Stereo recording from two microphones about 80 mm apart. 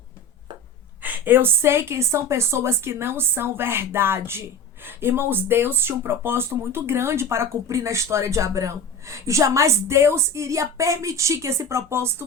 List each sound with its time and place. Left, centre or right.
1.0 s a woman's voice: right